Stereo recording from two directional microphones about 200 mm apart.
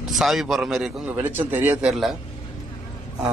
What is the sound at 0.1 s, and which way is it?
A man's voice, centre (ahead or behind).